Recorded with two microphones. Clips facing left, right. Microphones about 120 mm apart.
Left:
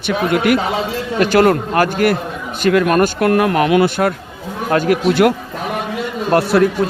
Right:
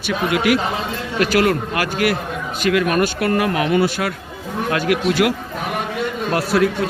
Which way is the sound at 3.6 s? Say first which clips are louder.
Left 3 dB; 65° left (ahead or behind).